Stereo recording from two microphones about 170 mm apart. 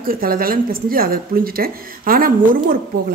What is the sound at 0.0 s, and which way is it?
Speech, 60° right (ahead or behind).